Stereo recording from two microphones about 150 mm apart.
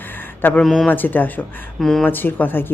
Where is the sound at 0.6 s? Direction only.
Centre (ahead or behind).